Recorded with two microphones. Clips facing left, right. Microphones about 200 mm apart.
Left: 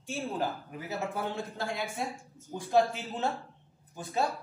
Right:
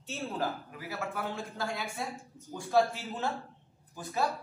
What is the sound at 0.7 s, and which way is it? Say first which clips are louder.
A man's voice: left 3 dB; 25° left (ahead or behind).